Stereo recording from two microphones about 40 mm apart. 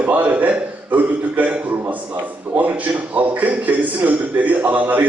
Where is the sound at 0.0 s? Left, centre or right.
Right.